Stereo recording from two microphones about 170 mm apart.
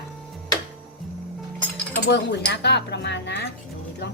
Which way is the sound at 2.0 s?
80° left.